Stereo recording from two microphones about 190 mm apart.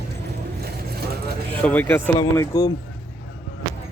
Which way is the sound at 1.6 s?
10° left (ahead or behind).